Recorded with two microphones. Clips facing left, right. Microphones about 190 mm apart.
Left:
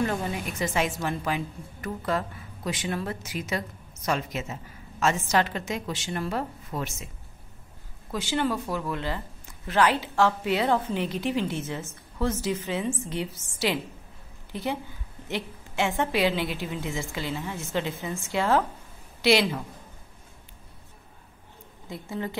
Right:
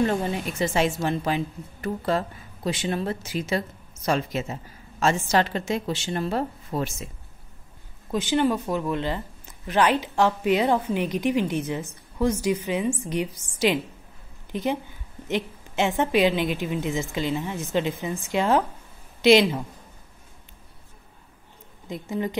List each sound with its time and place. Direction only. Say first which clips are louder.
0.0 s a woman's voice: right 4 dB; 30° right (ahead or behind)
8.1 s a woman's voice: right 5 dB; 20° right (ahead or behind)
15.2 s a sound: right 5 dB; 20° right (ahead or behind)
16.0 s a woman's voice: right 5 dB; 20° right (ahead or behind)
21.8 s speech: right 5 dB; 20° right (ahead or behind)